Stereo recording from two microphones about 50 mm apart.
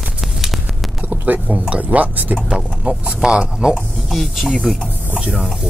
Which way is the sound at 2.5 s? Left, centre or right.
Centre.